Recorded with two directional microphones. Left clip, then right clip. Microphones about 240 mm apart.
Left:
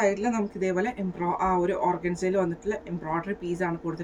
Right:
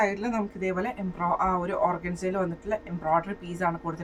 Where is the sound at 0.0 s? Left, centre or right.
Centre.